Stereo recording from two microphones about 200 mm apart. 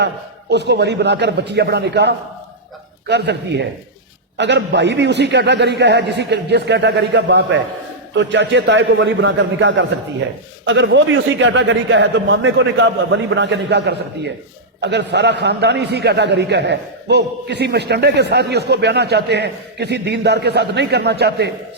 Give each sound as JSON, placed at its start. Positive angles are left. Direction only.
{"t": 0.5, "sound": "a man's voice", "side_deg": -60}